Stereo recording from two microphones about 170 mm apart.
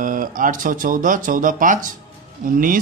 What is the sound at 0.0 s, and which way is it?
Speech, 50° right (ahead or behind).